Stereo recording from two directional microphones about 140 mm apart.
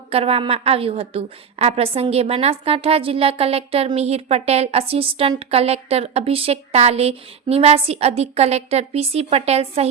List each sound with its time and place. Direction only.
0.1 s a woman's voice: 45° right (ahead or behind)